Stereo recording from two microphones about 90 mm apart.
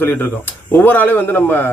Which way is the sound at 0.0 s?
25° left (ahead or behind).